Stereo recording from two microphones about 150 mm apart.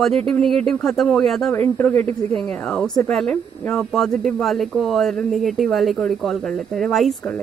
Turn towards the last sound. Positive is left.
turn(degrees=0)  # may be behind; listen again after turning